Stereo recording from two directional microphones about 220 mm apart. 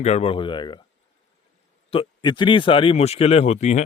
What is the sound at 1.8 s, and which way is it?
A man's voice, 25° left (ahead or behind).